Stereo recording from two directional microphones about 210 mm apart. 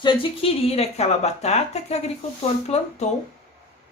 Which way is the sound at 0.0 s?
25° left (ahead or behind).